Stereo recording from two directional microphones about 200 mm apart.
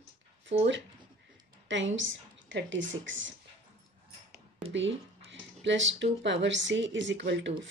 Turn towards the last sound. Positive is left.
turn(degrees=-60)  # may be behind; listen again after turning